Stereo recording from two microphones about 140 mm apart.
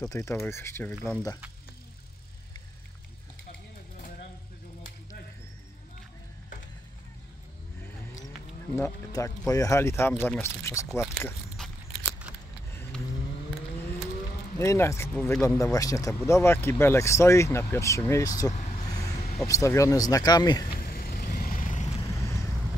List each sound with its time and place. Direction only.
0.1 s speech: 20° left (ahead or behind)
8.7 s speech: 20° left (ahead or behind)
14.6 s speech: 20° left (ahead or behind)
18.5 s vehicle: 55° left (ahead or behind)
18.9 s vehicle: 25° left (ahead or behind)
19.1 s vehicle: 50° left (ahead or behind)
19.4 s speech: 20° left (ahead or behind)
20.8 s vehicle: 90° left; by 21.9 s 60° left (ahead or behind)
22.0 s vehicle: 20° left (ahead or behind)